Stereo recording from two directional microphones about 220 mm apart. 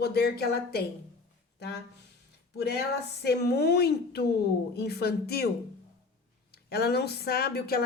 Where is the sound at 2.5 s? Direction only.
50° left (ahead or behind).